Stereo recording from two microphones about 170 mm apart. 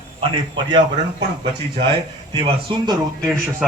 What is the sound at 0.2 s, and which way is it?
Speech, 30° right (ahead or behind).